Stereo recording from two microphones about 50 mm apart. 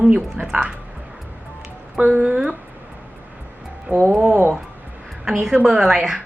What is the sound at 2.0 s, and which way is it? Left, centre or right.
Speech, right.